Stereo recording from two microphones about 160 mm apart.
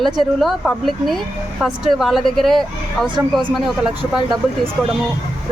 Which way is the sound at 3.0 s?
30° right (ahead or behind).